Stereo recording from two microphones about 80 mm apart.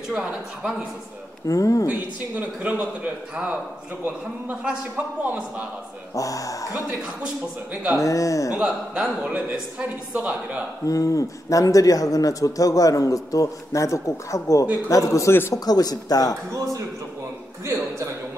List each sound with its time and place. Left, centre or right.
0.1 s speech: centre
1.5 s speech: left
1.9 s a man's voice: centre
4.9 s a man's voice: centre
6.1 s speech: left
8.0 s speech: left
8.5 s speech: centre
10.9 s a man's voice: left
15.5 s speech: left
16.5 s a man's voice: right